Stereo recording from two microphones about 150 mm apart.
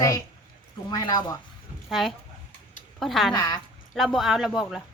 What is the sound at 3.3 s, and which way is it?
Speech, 25° left (ahead or behind).